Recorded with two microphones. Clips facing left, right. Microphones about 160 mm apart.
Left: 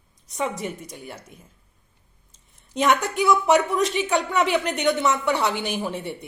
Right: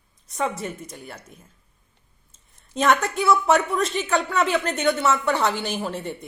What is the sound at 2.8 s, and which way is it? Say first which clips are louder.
Speech: even; 15° left (ahead or behind).